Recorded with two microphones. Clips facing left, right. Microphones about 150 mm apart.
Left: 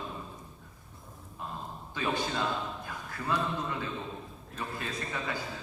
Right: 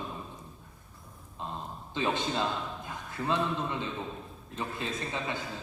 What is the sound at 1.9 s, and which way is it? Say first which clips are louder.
A man's voice: right 2 dB; 20° right (ahead or behind).